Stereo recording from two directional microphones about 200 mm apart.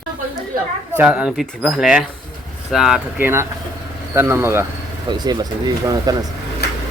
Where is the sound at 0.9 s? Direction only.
5° right (ahead or behind).